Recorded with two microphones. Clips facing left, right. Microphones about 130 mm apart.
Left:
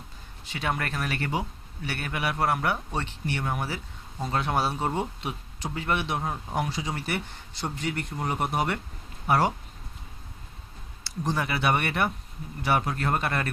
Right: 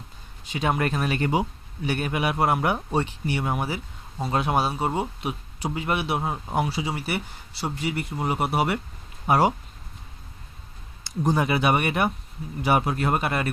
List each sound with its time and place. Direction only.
0.5 s speech: 20° right (ahead or behind)
11.0 s speech: 20° right (ahead or behind)